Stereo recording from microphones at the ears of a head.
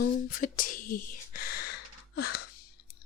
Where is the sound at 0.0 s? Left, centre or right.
Left.